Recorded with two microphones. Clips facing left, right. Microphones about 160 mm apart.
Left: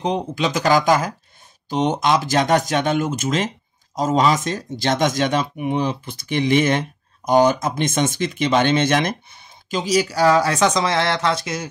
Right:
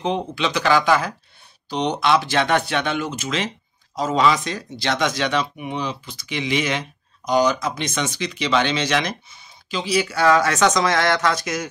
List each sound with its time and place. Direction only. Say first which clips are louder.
0.0 s speech: left 1 dB; 40° left (ahead or behind)